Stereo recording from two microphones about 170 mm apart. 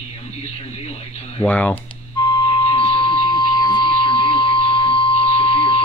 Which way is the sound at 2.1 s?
25° left (ahead or behind).